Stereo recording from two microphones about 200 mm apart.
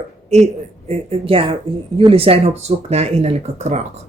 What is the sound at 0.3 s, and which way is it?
A man's voice, 35° right (ahead or behind).